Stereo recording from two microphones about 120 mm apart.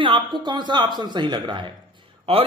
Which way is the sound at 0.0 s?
40° right (ahead or behind).